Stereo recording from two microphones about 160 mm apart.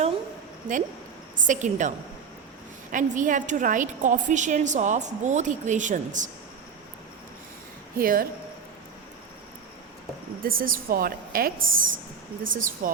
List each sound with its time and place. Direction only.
1.5 s a woman's voice: 50° right (ahead or behind)
2.9 s a woman's voice: 55° right (ahead or behind)
7.9 s a woman's voice: 65° right (ahead or behind)
10.4 s a woman's voice: 65° right (ahead or behind)